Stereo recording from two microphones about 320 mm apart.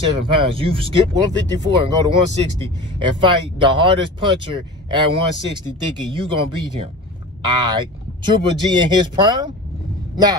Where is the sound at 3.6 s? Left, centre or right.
Centre.